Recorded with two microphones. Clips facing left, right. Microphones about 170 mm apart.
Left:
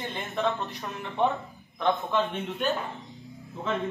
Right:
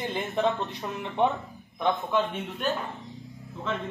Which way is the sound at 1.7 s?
5° right (ahead or behind).